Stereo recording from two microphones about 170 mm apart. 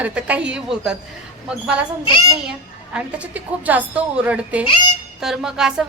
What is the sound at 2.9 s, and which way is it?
A woman's voice, 10° right (ahead or behind).